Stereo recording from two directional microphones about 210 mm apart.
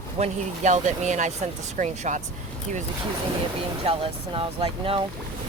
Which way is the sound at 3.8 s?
25° right (ahead or behind).